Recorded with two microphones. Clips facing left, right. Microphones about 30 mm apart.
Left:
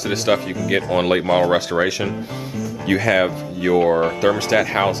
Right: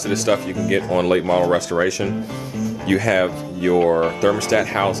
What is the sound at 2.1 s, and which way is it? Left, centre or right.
Music, centre.